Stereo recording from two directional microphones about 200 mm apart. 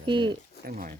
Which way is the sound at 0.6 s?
45° right (ahead or behind).